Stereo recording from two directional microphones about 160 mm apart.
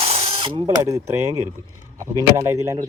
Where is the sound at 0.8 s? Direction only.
20° right (ahead or behind).